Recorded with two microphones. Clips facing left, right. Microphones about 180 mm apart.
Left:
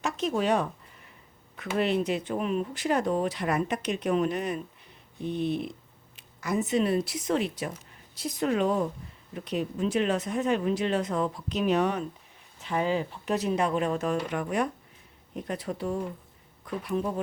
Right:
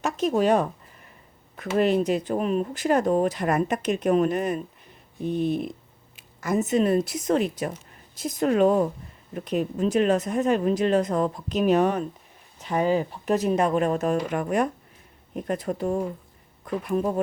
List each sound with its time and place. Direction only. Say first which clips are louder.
0.0 s speech: right 5 dB; 45° right (ahead or behind)